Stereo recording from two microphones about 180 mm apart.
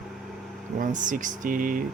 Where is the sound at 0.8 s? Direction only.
45° right (ahead or behind).